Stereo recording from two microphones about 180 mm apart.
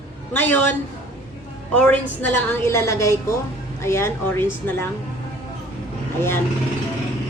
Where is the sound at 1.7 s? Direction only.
5° left (ahead or behind).